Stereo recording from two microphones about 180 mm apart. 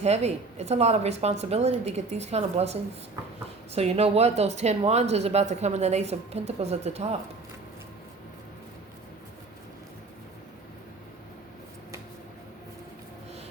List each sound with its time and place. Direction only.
0.0 s speech: 35° right (ahead or behind)
3.8 s speech: 35° right (ahead or behind)